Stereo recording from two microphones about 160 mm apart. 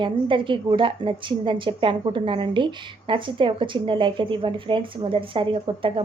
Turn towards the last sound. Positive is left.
turn(degrees=-35)  # may be behind; listen again after turning